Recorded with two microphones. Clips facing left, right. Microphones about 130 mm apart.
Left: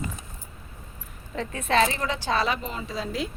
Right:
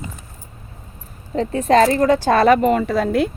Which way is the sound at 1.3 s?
35° right (ahead or behind).